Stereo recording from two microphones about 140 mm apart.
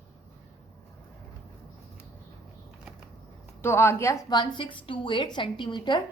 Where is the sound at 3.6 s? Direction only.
15° left (ahead or behind).